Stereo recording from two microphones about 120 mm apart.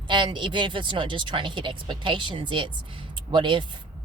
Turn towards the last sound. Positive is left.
turn(degrees=-40)  # may be behind; listen again after turning